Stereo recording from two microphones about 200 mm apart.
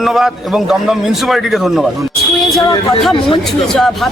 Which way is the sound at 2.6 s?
20° left (ahead or behind).